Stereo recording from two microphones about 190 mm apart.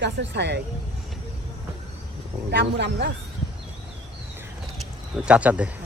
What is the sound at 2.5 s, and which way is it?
Speech, 65° right (ahead or behind).